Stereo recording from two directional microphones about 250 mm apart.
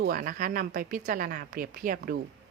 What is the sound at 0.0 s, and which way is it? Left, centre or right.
Speech, right.